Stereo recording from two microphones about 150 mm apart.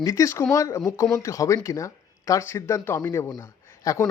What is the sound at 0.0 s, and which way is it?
Speech, 20° left (ahead or behind).